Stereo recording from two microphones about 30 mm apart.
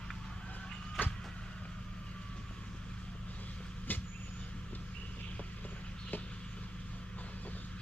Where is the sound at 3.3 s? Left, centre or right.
Left.